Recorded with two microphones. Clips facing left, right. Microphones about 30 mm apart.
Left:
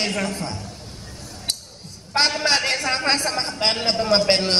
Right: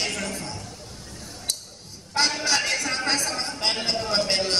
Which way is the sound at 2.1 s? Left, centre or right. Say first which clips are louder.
Left 4 dB; left.